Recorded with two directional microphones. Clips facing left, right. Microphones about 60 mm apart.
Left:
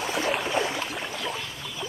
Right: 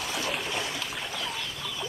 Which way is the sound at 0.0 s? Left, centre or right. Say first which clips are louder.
Left 5 dB; left.